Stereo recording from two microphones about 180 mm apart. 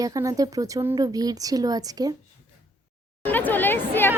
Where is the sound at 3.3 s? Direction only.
10° left (ahead or behind).